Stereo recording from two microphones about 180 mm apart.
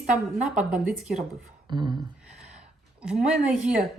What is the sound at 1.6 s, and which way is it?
Speech, 25° right (ahead or behind).